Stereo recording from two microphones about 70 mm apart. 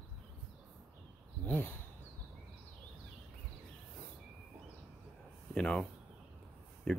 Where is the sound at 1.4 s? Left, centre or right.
Left.